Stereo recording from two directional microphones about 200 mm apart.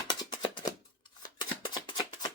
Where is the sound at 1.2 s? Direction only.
20° left (ahead or behind).